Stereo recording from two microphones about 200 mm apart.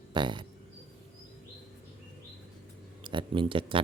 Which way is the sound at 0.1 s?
25° right (ahead or behind).